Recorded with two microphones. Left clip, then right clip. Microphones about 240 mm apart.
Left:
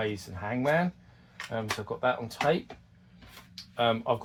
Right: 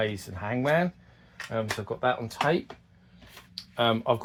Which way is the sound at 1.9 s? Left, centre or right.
Right.